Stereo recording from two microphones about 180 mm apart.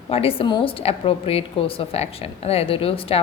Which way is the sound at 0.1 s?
35° left (ahead or behind).